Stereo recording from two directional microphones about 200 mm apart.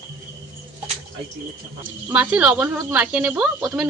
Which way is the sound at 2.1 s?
5° right (ahead or behind).